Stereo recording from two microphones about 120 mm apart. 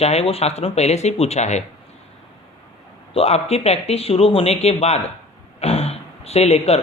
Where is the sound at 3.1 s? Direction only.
60° left (ahead or behind).